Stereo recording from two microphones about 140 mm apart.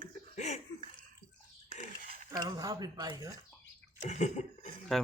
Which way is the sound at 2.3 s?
30° right (ahead or behind).